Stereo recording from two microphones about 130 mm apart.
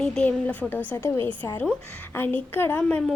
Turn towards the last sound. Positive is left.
turn(degrees=15)  # may be behind; listen again after turning